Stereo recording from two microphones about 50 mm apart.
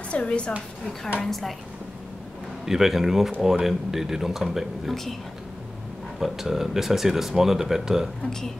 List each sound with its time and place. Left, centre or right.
0.1 s speech: left
1.2 s speech: centre
2.6 s speech: centre
6.1 s speech: centre